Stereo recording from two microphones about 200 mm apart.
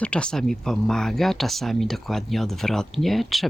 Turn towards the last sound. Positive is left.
turn(degrees=0)  # may be behind; listen again after turning